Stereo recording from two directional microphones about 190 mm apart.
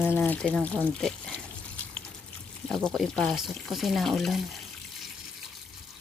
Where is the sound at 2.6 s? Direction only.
5° left (ahead or behind).